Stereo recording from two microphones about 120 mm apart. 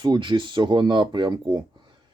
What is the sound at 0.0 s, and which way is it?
Speech, 40° right (ahead or behind).